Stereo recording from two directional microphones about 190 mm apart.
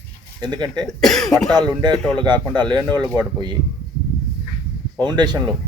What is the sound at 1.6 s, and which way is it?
Speech, 20° right (ahead or behind).